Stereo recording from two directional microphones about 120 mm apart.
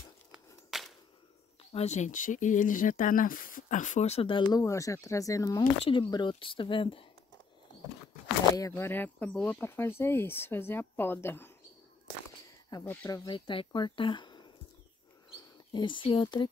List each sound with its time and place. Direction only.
0.3 s a sound: centre (ahead or behind)
1.6 s speech: 55° left (ahead or behind)
4.6 s speech: 25° left (ahead or behind)
5.6 s speech: 45° left (ahead or behind)
8.5 s speech: 25° left (ahead or behind); by 9.7 s 10° left (ahead or behind)
9.7 s speech: 20° left (ahead or behind)
12.8 s speech: 15° left (ahead or behind)
13.3 s speech: 45° left (ahead or behind)
15.7 s speech: 40° left (ahead or behind)